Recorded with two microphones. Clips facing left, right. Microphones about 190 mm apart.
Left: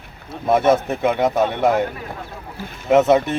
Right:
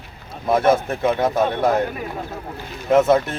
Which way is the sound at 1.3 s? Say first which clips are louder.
Left 1 dB; centre (ahead or behind).